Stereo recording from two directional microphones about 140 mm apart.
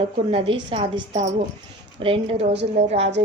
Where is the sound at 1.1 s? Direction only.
55° right (ahead or behind).